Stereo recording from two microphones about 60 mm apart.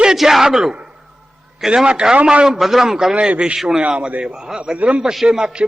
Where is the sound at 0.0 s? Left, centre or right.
Centre.